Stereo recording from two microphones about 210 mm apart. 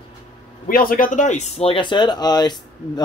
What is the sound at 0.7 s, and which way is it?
Speech, 40° left (ahead or behind).